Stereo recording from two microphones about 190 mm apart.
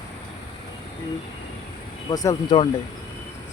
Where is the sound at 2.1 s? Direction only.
20° left (ahead or behind).